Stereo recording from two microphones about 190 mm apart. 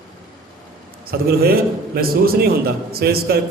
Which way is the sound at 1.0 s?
55° right (ahead or behind).